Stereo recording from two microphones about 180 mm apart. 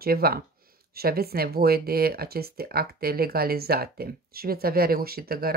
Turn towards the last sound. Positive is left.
turn(degrees=-55)  # may be behind; listen again after turning